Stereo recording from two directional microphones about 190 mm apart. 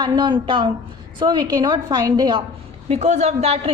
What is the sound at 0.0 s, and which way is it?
Speech, 25° right (ahead or behind).